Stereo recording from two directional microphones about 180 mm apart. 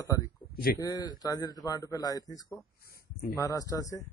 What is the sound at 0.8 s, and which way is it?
Speech, 20° left (ahead or behind).